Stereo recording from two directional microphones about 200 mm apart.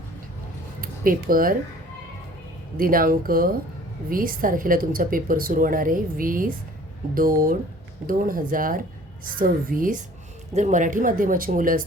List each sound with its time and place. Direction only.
0.8 s speech: 45° right (ahead or behind)
2.7 s speech: 45° right (ahead or behind)